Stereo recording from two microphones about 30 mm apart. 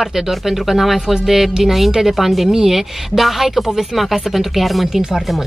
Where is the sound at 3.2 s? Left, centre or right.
Centre.